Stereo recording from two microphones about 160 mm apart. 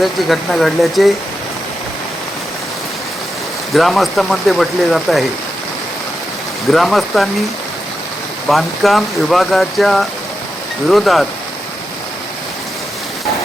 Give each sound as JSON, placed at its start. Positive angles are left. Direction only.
{"t": 0.0, "sound": "speech", "side_deg": 0}
{"t": 3.8, "sound": "speech", "side_deg": 0}
{"t": 6.7, "sound": "speech", "side_deg": 0}
{"t": 8.4, "sound": "speech", "side_deg": 0}